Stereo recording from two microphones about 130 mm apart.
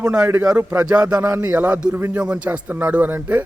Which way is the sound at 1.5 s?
10° right (ahead or behind).